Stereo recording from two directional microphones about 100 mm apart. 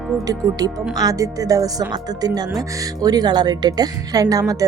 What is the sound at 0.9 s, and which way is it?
Speech, 35° right (ahead or behind).